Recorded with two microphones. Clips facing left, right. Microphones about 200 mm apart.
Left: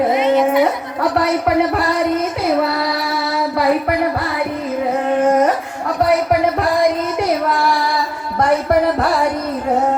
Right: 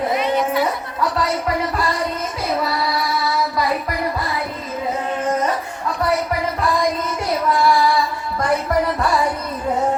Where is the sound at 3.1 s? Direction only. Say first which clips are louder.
Left 2 dB; 65° left (ahead or behind).